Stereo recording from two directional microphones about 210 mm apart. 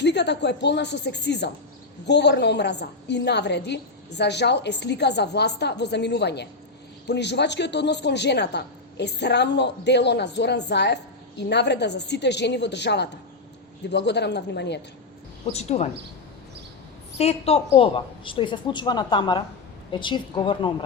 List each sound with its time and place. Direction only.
0.0 s a woman's voice: 55° left (ahead or behind)
15.5 s speech: 30° left (ahead or behind)
17.2 s a woman's voice: 30° left (ahead or behind)